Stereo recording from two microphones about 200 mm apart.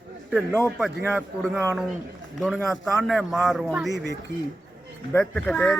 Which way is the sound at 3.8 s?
60° right (ahead or behind).